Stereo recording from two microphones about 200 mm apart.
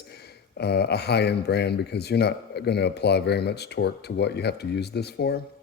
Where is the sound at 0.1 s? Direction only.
55° left (ahead or behind).